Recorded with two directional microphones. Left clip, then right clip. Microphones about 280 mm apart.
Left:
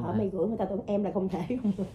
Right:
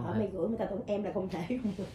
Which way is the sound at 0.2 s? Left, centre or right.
Left.